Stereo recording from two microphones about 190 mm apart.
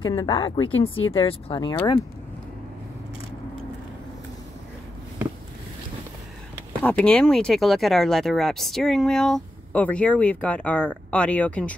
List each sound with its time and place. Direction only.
0.0 s speech: 20° left (ahead or behind)
0.7 s speech: 90° left
1.1 s speech: 25° left (ahead or behind)
6.8 s speech: 10° left (ahead or behind)